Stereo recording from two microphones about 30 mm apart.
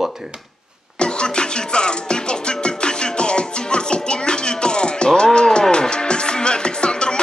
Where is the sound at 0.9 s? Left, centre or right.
Left.